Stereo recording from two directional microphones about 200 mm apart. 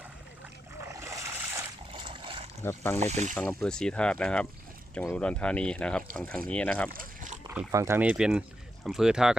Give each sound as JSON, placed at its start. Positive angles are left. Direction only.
{"t": 0.8, "sound": "a sound", "side_deg": -15}
{"t": 1.9, "sound": "boat", "side_deg": -25}
{"t": 2.6, "sound": "speech", "side_deg": 10}
{"t": 3.0, "sound": "speech", "side_deg": -35}
{"t": 3.3, "sound": "speech", "side_deg": 5}
{"t": 6.9, "sound": "a sound", "side_deg": -45}
{"t": 7.4, "sound": "speech", "side_deg": -15}